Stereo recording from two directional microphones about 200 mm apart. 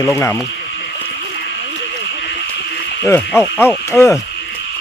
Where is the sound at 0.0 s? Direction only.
10° left (ahead or behind).